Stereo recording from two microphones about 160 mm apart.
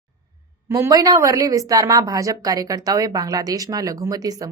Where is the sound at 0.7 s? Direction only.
20° right (ahead or behind).